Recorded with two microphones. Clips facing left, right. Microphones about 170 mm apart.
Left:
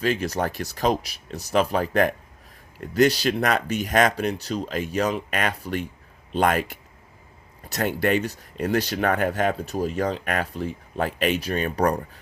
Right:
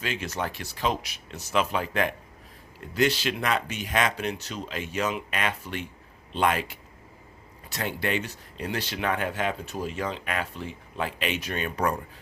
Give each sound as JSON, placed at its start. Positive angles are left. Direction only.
{"t": 0.0, "sound": "speech", "side_deg": 40}